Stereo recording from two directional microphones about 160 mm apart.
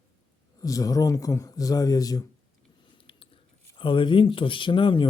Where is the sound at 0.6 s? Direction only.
20° left (ahead or behind).